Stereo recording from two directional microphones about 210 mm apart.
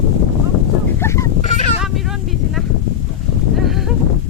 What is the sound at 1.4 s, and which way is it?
Fowl, 30° left (ahead or behind).